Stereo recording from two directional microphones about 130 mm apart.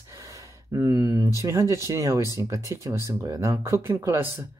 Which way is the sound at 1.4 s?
25° right (ahead or behind).